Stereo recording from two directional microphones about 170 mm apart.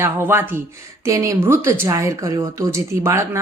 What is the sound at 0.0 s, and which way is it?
A woman's voice, 15° right (ahead or behind).